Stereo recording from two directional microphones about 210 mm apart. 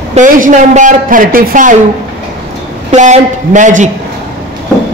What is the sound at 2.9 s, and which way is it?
A man's voice, 35° right (ahead or behind).